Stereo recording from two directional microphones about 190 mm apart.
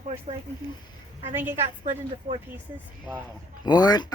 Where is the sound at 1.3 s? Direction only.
10° right (ahead or behind).